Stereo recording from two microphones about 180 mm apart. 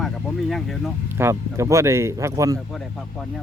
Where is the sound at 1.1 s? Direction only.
15° right (ahead or behind).